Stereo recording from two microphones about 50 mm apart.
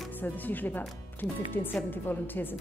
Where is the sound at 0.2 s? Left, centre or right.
Left.